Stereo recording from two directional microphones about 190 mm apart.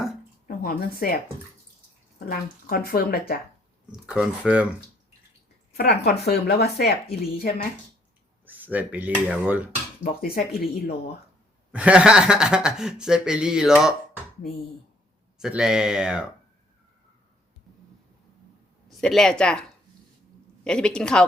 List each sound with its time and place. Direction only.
0.4 s a woman's voice: 50° left (ahead or behind)
3.9 s speech: 5° right (ahead or behind)
5.7 s speech: 55° left (ahead or behind)
8.4 s speech: 10° right (ahead or behind)
10.0 s speech: 50° left (ahead or behind)
11.7 s speech: 5° right (ahead or behind)
15.4 s speech: 5° right (ahead or behind)
18.9 s speech: centre (ahead or behind)
20.7 s speech: 5° left (ahead or behind)